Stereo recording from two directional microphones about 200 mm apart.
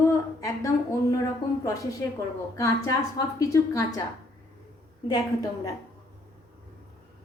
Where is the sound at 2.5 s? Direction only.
15° left (ahead or behind).